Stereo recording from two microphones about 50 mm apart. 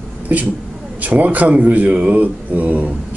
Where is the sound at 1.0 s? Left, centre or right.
Right.